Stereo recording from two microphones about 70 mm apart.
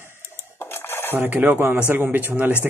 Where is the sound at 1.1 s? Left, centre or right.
Right.